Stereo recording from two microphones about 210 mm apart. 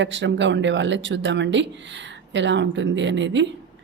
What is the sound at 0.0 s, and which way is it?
Speech, 60° right (ahead or behind).